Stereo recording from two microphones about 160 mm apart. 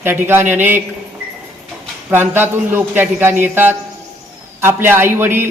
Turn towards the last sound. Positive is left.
turn(degrees=-15)  # may be behind; listen again after turning